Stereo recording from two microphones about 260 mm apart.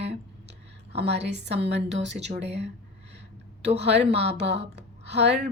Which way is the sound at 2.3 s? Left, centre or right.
Right.